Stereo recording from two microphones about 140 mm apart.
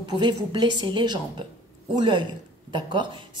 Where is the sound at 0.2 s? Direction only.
30° right (ahead or behind).